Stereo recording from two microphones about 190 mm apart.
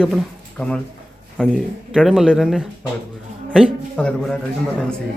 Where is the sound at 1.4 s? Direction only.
5° left (ahead or behind).